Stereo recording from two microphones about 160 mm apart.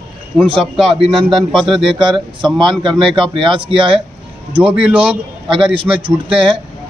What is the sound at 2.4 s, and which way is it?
Speech, 30° right (ahead or behind).